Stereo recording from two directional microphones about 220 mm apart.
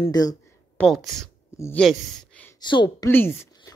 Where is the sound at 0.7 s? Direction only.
Centre (ahead or behind).